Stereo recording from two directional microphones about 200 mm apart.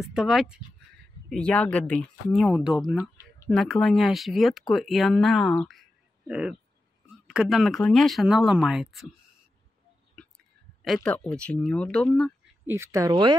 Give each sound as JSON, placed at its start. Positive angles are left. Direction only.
{"t": 0.0, "sound": "speech", "side_deg": 0}
{"t": 3.0, "sound": "speech", "side_deg": 15}
{"t": 11.1, "sound": "speech", "side_deg": 5}
{"t": 12.6, "sound": "speech", "side_deg": -15}